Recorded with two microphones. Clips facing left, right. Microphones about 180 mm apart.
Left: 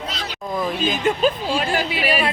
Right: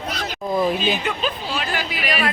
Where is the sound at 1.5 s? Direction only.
30° left (ahead or behind).